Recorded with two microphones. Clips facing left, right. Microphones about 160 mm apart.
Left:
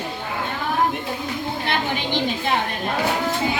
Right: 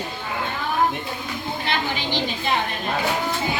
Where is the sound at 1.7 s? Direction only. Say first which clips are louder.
Left 1 dB; 55° left (ahead or behind).